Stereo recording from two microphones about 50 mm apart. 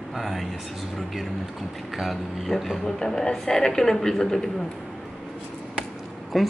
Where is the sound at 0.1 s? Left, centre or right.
Centre.